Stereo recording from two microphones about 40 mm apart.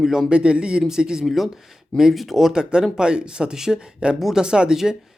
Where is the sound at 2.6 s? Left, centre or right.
Right.